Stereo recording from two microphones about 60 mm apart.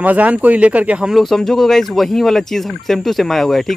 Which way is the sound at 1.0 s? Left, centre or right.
Centre.